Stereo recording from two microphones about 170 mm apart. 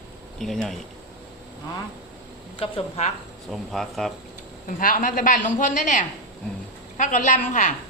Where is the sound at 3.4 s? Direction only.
Centre (ahead or behind).